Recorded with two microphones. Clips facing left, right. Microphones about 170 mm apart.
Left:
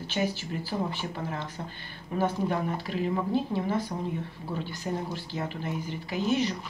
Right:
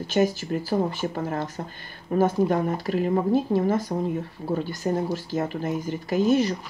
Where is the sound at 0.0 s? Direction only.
45° right (ahead or behind).